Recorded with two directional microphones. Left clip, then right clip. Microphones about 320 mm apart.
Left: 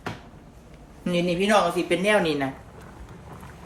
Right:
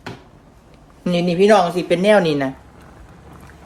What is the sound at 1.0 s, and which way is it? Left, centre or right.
Speech, right.